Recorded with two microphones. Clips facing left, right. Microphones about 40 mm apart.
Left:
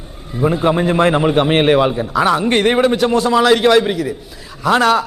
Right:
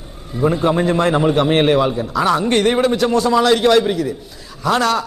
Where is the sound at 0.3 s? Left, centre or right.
Centre.